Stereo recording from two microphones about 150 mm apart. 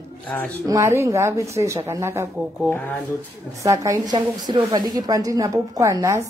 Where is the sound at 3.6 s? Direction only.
20° right (ahead or behind).